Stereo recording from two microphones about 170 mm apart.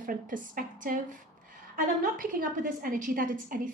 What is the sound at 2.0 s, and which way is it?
A woman's voice, 55° right (ahead or behind).